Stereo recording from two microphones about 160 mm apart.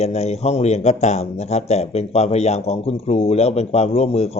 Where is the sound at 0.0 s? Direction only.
40° left (ahead or behind).